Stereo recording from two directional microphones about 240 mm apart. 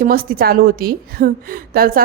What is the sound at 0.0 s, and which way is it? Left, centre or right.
A woman's voice, right.